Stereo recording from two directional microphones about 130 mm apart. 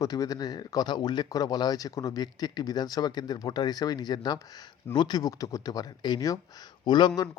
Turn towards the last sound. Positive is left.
turn(degrees=35)  # may be behind; listen again after turning